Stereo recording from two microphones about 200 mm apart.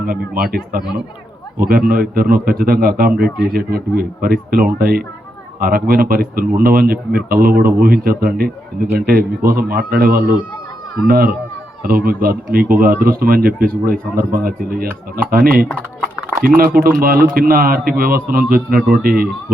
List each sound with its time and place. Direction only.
0.0 s a man's voice: 45° right (ahead or behind)